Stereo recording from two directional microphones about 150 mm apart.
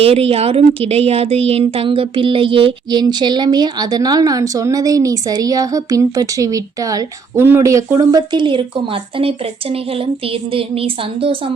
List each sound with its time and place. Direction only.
0.0 s speech: 40° right (ahead or behind)